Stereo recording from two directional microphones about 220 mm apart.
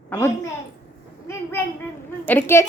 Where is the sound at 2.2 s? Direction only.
10° left (ahead or behind).